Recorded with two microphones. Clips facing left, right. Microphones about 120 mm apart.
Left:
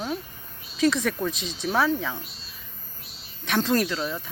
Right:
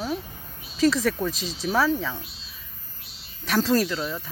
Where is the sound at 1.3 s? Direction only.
35° right (ahead or behind).